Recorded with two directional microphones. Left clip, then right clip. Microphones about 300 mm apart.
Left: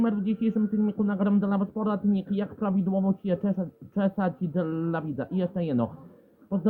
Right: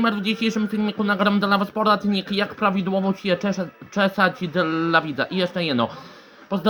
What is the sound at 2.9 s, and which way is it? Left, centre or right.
Speech, right.